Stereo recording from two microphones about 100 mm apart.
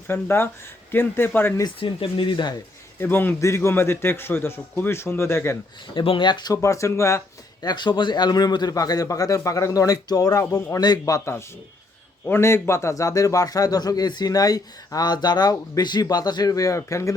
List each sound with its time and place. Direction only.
0.1 s a man's voice: 25° left (ahead or behind)
1.8 s speech: 60° left (ahead or behind)
3.0 s a man's voice: 20° left (ahead or behind)
5.9 s speech: 55° left (ahead or behind)
6.5 s speech: 30° left (ahead or behind)
7.6 s speech: 45° left (ahead or behind); by 17.2 s 30° left (ahead or behind)